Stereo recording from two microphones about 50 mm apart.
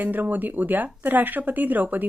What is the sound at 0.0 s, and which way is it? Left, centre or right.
Speech, right.